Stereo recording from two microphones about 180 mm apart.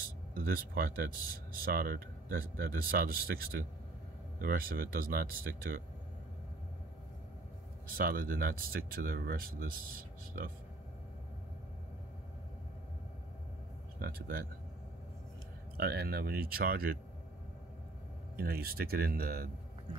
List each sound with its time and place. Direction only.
0.4 s speech: 55° right (ahead or behind)
8.0 s speech: 50° right (ahead or behind)
14.0 s speech: 55° right (ahead or behind)
15.8 s speech: 60° right (ahead or behind)
18.4 s speech: 60° right (ahead or behind)